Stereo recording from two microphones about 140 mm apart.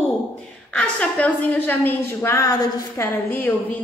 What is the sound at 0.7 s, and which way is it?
A woman's voice, 10° left (ahead or behind).